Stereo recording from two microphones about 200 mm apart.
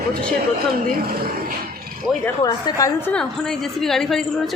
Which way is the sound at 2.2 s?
20° left (ahead or behind).